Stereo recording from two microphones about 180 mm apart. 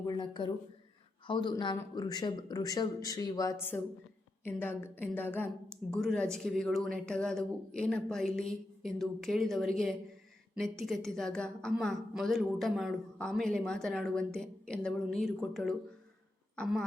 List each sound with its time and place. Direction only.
0.0 s a man's voice: 25° left (ahead or behind); by 16.8 s centre (ahead or behind)